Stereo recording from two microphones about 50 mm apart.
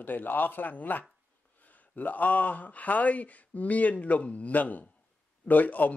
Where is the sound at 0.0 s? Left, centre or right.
Left.